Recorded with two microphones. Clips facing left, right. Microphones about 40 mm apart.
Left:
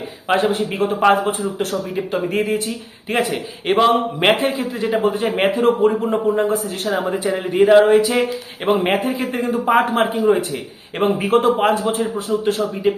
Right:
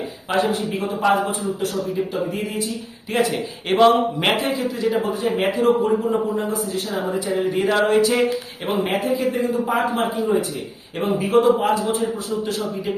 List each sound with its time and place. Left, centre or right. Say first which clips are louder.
0.3 s speech: left 3 dB; left
3.1 s speech: left 1 dB; left
3.7 s a man's voice: left 2 dB; centre
4.2 s speech: left 4 dB; left
7.3 s speech: left 8 dB; left
8.6 s speech: left 5 dB; left